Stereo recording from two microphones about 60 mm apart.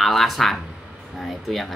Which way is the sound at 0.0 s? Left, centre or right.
Centre.